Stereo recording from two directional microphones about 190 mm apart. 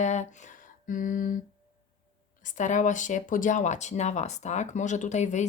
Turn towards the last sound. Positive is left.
turn(degrees=40)  # may be behind; listen again after turning